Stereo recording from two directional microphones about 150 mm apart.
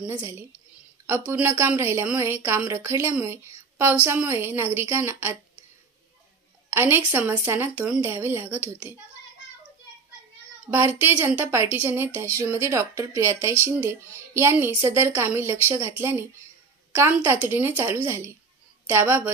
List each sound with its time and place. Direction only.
0.2 s a woman's voice: 20° right (ahead or behind)
6.7 s a woman's voice: 15° right (ahead or behind)
10.7 s a woman's voice: 15° right (ahead or behind)